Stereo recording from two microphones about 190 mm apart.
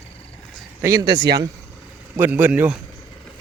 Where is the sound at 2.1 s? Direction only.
10° right (ahead or behind).